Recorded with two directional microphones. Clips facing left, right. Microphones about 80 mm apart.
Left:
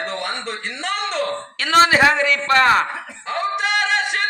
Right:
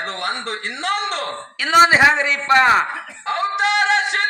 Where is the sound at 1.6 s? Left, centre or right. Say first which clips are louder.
Right 1 dB; centre.